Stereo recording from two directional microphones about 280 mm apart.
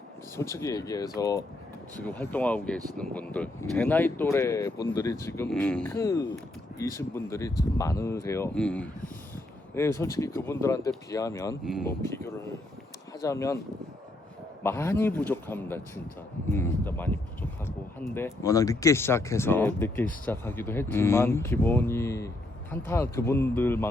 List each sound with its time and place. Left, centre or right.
0.3 s speech: centre
11.6 s speech: centre
11.9 s speech: centre
14.6 s speech: centre
18.1 s speech: centre